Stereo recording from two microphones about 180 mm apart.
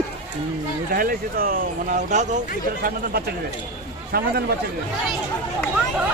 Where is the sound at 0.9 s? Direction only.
55° right (ahead or behind).